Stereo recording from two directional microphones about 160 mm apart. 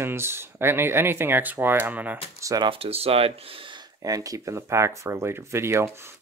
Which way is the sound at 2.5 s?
30° right (ahead or behind).